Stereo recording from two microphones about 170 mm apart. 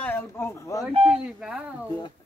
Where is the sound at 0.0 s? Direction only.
10° left (ahead or behind).